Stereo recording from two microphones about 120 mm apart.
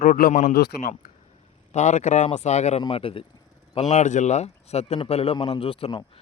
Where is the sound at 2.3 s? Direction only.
70° left (ahead or behind).